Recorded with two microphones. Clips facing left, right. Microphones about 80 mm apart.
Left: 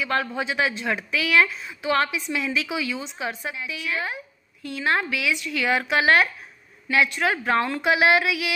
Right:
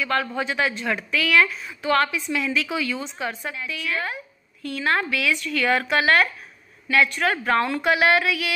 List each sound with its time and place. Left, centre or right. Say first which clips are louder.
0.0 s a woman's voice: right 1 dB; left